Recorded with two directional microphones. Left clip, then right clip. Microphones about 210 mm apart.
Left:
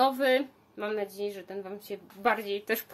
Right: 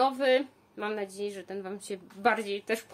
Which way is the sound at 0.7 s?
5° right (ahead or behind).